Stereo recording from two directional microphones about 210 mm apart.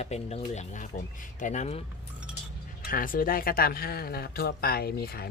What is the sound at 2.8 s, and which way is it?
Speech, 40° left (ahead or behind).